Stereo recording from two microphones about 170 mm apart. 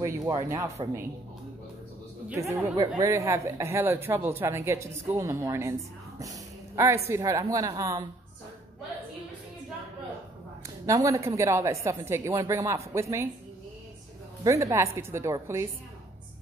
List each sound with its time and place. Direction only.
0.0 s speech: 20° right (ahead or behind)
2.2 s speech: 15° right (ahead or behind)
10.9 s speech: 20° right (ahead or behind)
14.4 s speech: 15° right (ahead or behind)